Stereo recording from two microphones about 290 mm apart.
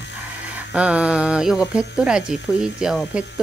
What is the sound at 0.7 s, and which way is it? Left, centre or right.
Speech, centre.